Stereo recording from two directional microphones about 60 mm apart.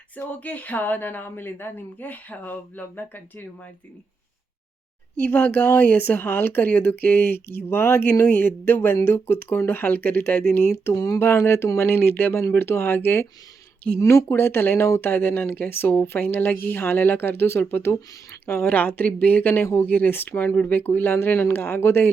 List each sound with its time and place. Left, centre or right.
0.2 s speech: left
5.2 s speech: left
10.9 s speech: left
11.2 s speech: left
14.0 s speech: left